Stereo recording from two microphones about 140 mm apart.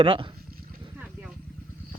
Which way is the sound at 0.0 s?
40° right (ahead or behind).